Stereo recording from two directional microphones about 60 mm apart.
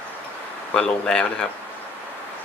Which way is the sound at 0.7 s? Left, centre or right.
Centre.